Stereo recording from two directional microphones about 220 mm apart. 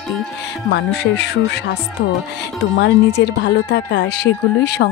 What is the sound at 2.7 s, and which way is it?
Speech, 50° left (ahead or behind).